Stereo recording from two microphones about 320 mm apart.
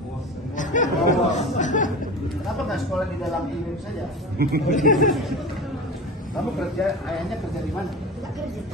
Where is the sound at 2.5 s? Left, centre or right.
Centre.